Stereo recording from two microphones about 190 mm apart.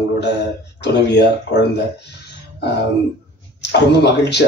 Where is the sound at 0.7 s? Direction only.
60° left (ahead or behind).